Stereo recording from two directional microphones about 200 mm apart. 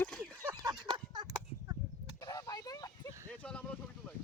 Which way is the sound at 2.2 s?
15° left (ahead or behind).